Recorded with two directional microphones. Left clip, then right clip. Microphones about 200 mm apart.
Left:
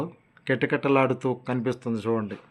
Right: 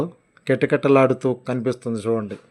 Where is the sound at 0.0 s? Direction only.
20° right (ahead or behind).